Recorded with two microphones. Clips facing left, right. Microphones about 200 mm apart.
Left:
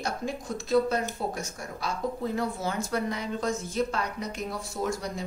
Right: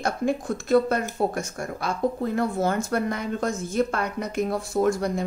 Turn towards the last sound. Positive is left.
turn(degrees=-55)  # may be behind; listen again after turning